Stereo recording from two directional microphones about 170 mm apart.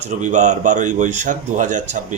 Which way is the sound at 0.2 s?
45° right (ahead or behind).